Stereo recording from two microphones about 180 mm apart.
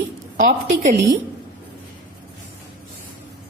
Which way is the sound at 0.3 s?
45° right (ahead or behind).